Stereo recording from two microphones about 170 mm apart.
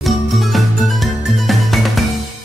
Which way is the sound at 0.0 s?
Centre (ahead or behind).